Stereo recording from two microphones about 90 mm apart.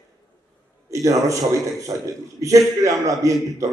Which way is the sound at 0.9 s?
35° right (ahead or behind).